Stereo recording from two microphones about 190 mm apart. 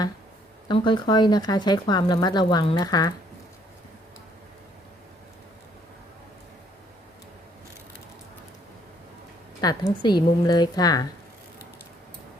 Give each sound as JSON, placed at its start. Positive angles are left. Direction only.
{"t": 0.7, "sound": "speech", "side_deg": 25}
{"t": 9.6, "sound": "speech", "side_deg": 20}